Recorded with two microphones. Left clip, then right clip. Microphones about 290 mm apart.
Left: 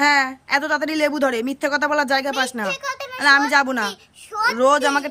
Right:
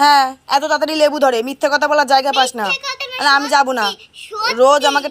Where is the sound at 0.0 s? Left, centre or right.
Centre.